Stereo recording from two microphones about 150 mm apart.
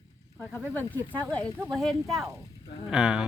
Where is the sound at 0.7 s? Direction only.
15° left (ahead or behind).